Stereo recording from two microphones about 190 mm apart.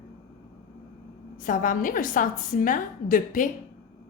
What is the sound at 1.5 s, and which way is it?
A woman's voice, 45° left (ahead or behind).